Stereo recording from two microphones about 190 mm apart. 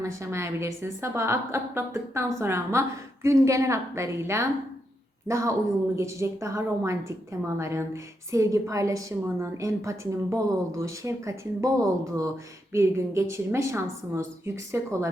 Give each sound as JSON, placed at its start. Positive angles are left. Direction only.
{"t": 0.0, "sound": "a woman's voice", "side_deg": -15}